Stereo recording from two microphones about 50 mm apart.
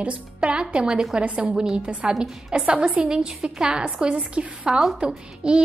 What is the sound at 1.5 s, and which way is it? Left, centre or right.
Speech, centre.